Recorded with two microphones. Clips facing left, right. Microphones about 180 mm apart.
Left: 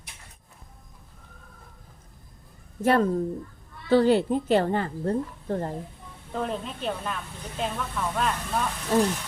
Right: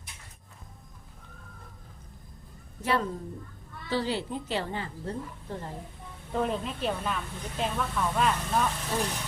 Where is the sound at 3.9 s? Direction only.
50° left (ahead or behind).